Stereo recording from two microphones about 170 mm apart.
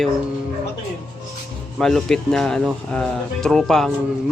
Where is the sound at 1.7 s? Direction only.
Centre (ahead or behind).